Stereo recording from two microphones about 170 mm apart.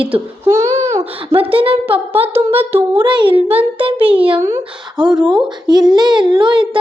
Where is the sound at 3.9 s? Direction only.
10° right (ahead or behind).